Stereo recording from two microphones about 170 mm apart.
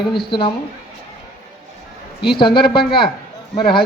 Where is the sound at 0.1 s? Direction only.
30° left (ahead or behind).